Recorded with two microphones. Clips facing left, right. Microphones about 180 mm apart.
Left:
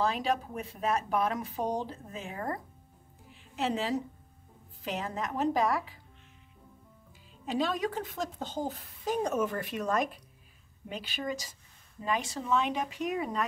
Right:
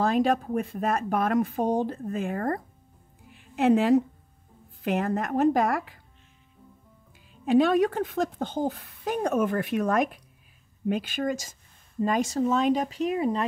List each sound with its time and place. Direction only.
0.0 s a woman's voice: 50° right (ahead or behind)
7.4 s speech: 55° right (ahead or behind); by 13.5 s 30° right (ahead or behind)